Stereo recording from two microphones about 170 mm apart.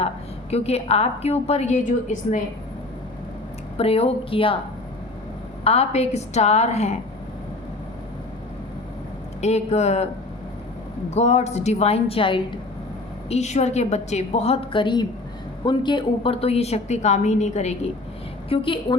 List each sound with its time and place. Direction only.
0.5 s a woman's voice: 35° left (ahead or behind)
3.8 s a woman's voice: 35° left (ahead or behind)
5.6 s a woman's voice: 40° left (ahead or behind)
9.4 s a woman's voice: 40° left (ahead or behind)
11.1 s a woman's voice: 40° left (ahead or behind)